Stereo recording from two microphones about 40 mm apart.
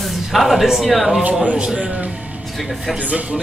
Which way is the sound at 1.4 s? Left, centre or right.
Right.